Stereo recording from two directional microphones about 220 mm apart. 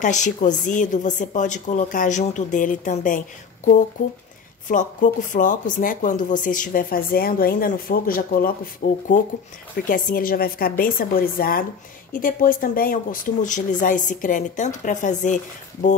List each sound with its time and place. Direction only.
0.0 s speech: 35° left (ahead or behind)